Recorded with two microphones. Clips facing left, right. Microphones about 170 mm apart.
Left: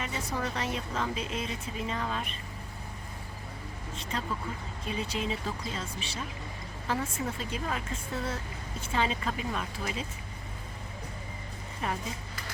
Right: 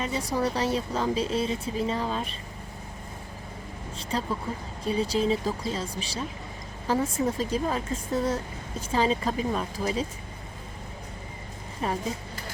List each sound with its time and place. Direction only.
0.0 s speech: 35° right (ahead or behind)
4.1 s speech: 35° right (ahead or behind)
11.8 s speech: 35° right (ahead or behind)